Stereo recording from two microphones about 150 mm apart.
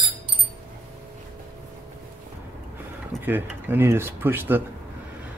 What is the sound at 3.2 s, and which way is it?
Speech, 15° right (ahead or behind).